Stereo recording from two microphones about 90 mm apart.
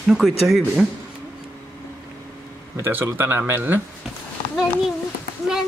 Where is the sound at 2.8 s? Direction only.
25° right (ahead or behind).